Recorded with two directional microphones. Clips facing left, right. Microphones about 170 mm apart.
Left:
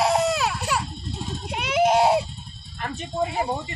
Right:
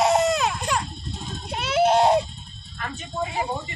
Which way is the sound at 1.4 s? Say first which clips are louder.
Even; 10° left (ahead or behind).